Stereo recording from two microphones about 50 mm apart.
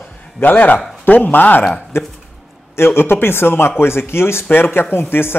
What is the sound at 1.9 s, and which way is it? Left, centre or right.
Speech, left.